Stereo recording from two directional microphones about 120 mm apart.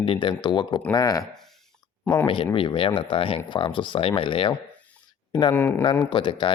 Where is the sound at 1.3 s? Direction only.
5° left (ahead or behind).